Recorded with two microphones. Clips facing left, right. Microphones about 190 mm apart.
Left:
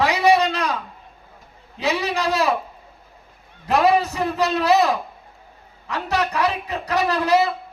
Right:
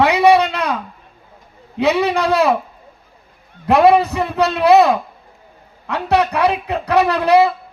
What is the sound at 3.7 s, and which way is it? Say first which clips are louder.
A woman's voice: right 6 dB; 60° right (ahead or behind).